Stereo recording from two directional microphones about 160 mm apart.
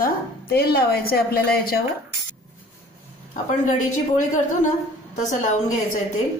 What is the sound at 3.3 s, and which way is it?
Speech, 50° left (ahead or behind).